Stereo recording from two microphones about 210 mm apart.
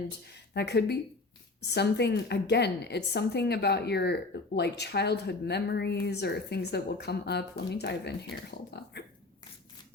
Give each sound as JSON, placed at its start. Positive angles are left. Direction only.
{"t": 0.5, "sound": "a woman's voice", "side_deg": 50}